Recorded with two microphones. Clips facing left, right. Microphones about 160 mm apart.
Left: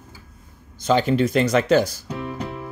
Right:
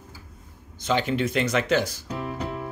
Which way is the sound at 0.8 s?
40° left (ahead or behind).